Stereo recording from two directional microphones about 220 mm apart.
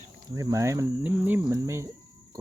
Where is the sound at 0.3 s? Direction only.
15° right (ahead or behind).